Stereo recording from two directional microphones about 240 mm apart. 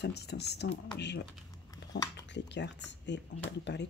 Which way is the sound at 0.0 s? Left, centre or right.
Left.